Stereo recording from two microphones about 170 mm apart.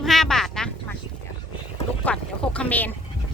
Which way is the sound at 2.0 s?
5° left (ahead or behind).